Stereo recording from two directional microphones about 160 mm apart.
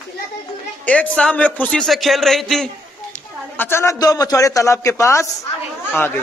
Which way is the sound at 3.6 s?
15° left (ahead or behind).